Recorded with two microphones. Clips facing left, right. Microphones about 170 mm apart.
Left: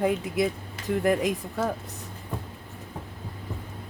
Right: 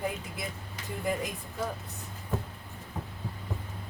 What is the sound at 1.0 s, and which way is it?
Speech, 85° left.